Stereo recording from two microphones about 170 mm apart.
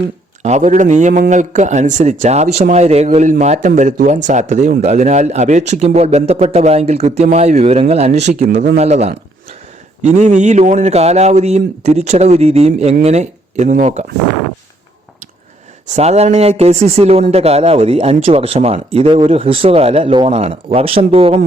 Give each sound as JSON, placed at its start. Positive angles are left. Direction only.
{"t": 0.4, "sound": "a man's voice", "side_deg": -45}
{"t": 15.9, "sound": "a man's voice", "side_deg": -40}